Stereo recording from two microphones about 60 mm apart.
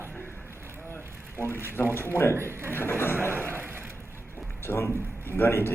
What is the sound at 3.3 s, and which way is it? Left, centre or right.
Slam, right.